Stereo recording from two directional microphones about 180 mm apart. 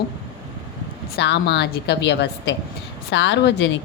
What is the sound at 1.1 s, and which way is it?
A woman's voice, 65° left (ahead or behind).